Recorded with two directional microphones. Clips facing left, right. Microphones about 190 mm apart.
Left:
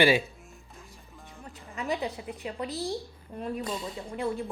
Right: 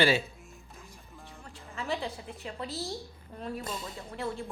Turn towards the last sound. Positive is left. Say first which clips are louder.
# left 4 dB
turn(degrees=0)  # may be behind; listen again after turning